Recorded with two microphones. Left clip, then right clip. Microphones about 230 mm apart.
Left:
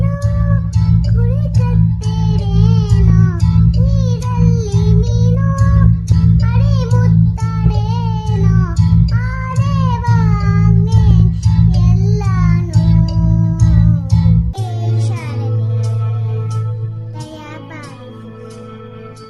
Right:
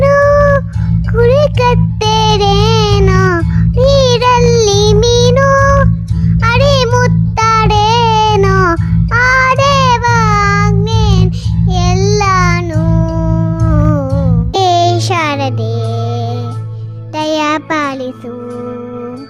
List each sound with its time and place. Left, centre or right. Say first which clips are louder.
0.0 s music: right 19 dB; right
9.1 s child singing: right 17 dB; right
11.7 s music: right 9 dB; right
14.5 s music for children: right 18 dB; right
17.2 s music: right 19 dB; right